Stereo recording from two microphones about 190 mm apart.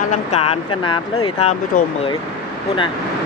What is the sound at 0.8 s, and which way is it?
Speech, 30° left (ahead or behind).